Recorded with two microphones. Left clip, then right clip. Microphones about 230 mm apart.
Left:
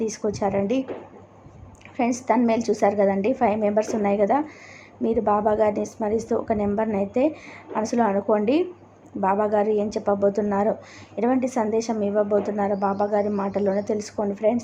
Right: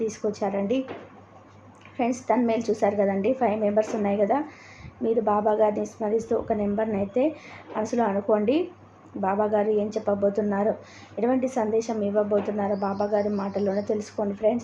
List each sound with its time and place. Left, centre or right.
0.0 s speech: left
2.0 s speech: centre